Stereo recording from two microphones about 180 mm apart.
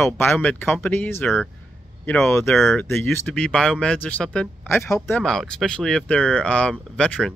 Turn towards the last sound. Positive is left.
turn(degrees=5)  # may be behind; listen again after turning